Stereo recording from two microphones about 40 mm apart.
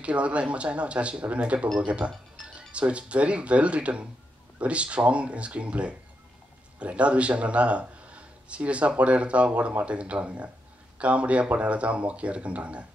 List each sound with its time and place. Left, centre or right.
0.0 s speech: right